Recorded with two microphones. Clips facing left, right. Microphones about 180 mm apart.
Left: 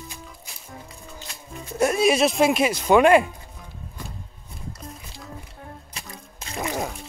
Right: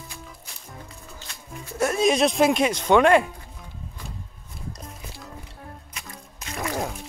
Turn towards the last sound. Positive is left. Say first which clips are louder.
# left 1 dB
turn(degrees=30)  # may be behind; listen again after turning